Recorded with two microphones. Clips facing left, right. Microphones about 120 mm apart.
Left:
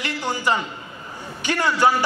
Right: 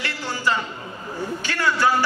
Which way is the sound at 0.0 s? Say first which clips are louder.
Left 1 dB; 15° left (ahead or behind).